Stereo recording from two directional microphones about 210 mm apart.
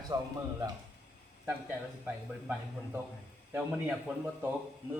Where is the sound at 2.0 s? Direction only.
5° right (ahead or behind).